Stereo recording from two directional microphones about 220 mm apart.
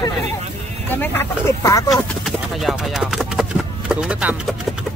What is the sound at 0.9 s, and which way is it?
Vehicle, 10° left (ahead or behind).